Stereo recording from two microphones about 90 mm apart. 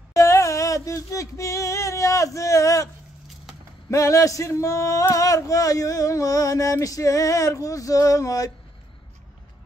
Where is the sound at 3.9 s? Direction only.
35° left (ahead or behind).